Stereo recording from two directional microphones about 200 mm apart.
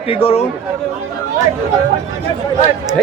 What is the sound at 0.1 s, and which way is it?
Speech, 30° left (ahead or behind).